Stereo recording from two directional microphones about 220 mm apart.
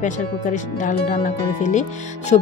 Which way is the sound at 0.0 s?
35° left (ahead or behind).